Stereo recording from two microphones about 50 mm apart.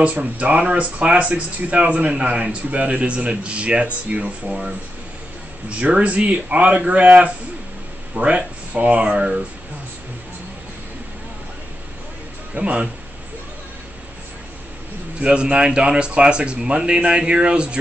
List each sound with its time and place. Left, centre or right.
0.0 s speech: right
12.5 s speech: right
15.1 s speech: right